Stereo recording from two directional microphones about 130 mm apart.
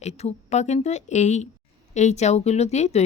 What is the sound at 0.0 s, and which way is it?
Speech, 60° left (ahead or behind).